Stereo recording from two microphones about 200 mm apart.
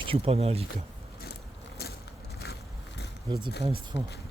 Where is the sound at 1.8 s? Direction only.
50° left (ahead or behind).